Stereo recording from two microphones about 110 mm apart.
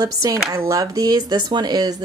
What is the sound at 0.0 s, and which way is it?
A woman's voice, 35° right (ahead or behind).